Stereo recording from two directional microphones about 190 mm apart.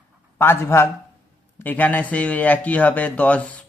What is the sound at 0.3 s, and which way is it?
Speech, 10° left (ahead or behind).